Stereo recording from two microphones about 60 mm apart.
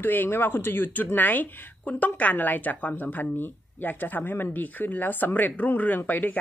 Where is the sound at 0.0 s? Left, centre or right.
Left.